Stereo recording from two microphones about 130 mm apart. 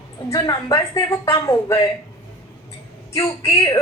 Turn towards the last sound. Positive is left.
turn(degrees=25)  # may be behind; listen again after turning